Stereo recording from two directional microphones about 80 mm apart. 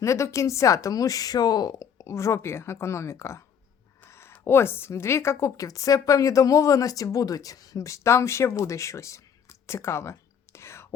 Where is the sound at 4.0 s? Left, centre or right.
Left.